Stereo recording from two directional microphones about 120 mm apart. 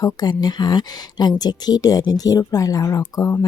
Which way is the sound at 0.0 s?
35° left (ahead or behind).